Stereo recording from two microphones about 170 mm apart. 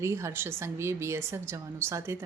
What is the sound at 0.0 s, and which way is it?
A woman's voice, 15° right (ahead or behind).